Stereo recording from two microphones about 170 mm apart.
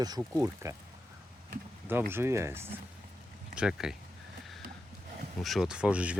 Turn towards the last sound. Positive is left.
turn(degrees=-5)  # may be behind; listen again after turning